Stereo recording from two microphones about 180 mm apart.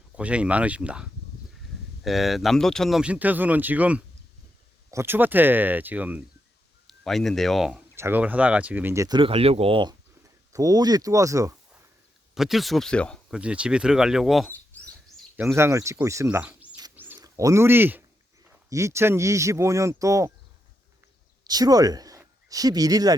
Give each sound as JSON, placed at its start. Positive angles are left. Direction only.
{"t": 0.2, "sound": "speech", "side_deg": -5}
{"t": 2.0, "sound": "speech", "side_deg": 0}
{"t": 6.8, "sound": "speech", "side_deg": 0}
{"t": 7.9, "sound": "speech", "side_deg": -10}
{"t": 12.3, "sound": "speech", "side_deg": 0}
{"t": 13.3, "sound": "speech", "side_deg": -5}
{"t": 14.5, "sound": "chirp", "side_deg": 10}
{"t": 15.5, "sound": "speech", "side_deg": -15}
{"t": 16.9, "sound": "a sound", "side_deg": -10}
{"t": 17.2, "sound": "speech", "side_deg": -20}
{"t": 21.4, "sound": "speech", "side_deg": -20}